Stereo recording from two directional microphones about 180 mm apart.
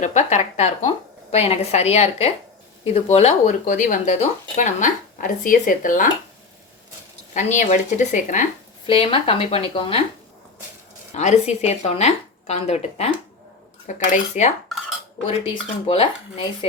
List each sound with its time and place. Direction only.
0.0 s a woman's voice: 40° left (ahead or behind)
7.3 s speech: 40° left (ahead or behind)
8.9 s speech: 30° left (ahead or behind)
11.1 s speech: 40° left (ahead or behind)
15.9 s speech: 30° left (ahead or behind)